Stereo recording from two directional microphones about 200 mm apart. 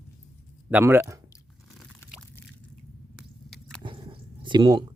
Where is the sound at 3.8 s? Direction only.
25° right (ahead or behind).